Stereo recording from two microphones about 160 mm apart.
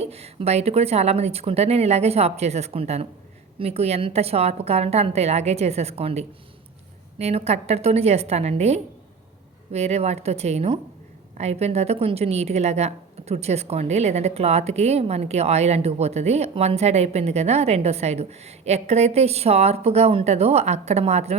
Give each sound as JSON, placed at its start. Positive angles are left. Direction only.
{"t": 0.0, "sound": "a woman's voice", "side_deg": -40}